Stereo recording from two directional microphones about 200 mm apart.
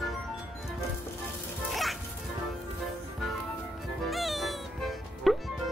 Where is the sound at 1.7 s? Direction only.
Centre (ahead or behind).